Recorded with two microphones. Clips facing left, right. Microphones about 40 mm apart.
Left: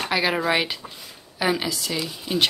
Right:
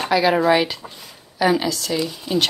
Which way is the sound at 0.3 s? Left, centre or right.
Centre.